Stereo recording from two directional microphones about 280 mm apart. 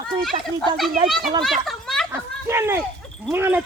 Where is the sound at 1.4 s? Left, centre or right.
Centre.